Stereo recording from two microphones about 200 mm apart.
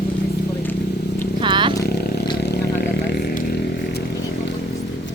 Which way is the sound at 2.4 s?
55° left (ahead or behind).